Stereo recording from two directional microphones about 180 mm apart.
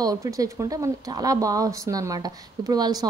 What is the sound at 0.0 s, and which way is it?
Speech, 20° right (ahead or behind).